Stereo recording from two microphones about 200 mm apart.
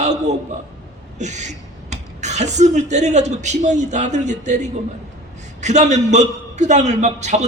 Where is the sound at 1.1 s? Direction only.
35° right (ahead or behind).